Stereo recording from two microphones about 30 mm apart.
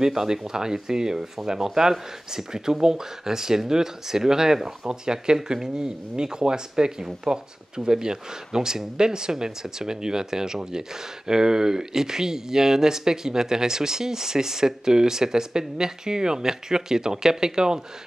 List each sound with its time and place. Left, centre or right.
0.0 s speech: centre